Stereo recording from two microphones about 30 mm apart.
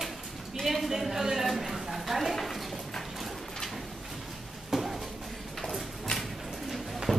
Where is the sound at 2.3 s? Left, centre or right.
Centre.